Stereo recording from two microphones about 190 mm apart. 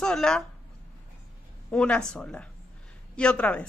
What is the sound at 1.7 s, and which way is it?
A woman's voice, 5° left (ahead or behind).